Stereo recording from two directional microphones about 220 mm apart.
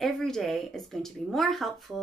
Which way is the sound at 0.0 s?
Centre (ahead or behind).